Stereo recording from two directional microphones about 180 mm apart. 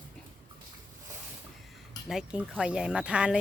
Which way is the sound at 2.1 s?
5° right (ahead or behind).